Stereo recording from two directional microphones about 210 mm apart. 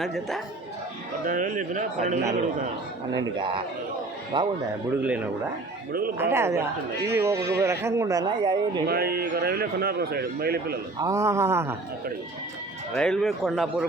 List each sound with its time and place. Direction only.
0.0 s speech: centre (ahead or behind)
1.2 s speech: 40° right (ahead or behind)
3.2 s a man's voice: 20° right (ahead or behind)
4.9 s a man's voice: 5° right (ahead or behind)
6.3 s a man's voice: 10° right (ahead or behind)
8.9 s speech: 45° right (ahead or behind)
11.0 s a man's voice: 15° right (ahead or behind)
12.9 s speech: 5° left (ahead or behind)